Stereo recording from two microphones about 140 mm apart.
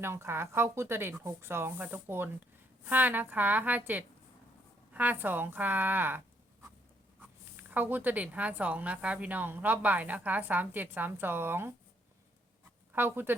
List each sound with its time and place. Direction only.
0.0 s a woman's voice: 20° right (ahead or behind)
12.9 s speech: 15° right (ahead or behind)